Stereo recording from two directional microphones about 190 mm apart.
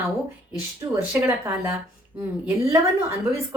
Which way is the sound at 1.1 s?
10° right (ahead or behind).